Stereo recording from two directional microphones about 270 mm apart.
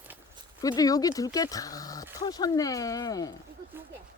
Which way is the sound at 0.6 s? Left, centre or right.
Centre.